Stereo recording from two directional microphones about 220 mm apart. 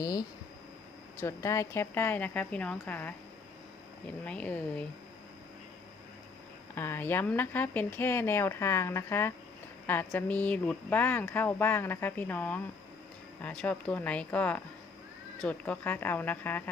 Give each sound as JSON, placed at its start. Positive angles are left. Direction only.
{"t": 0.0, "sound": "speech", "side_deg": 15}
{"t": 4.3, "sound": "speech", "side_deg": 5}
{"t": 6.7, "sound": "speech", "side_deg": 10}